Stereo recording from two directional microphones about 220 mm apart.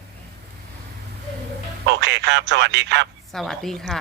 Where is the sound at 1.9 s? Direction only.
55° right (ahead or behind).